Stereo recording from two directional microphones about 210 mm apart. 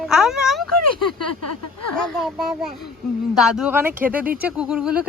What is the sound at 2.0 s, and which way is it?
Speech, 5° left (ahead or behind).